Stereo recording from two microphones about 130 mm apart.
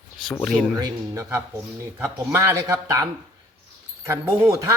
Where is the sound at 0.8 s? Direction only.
25° right (ahead or behind).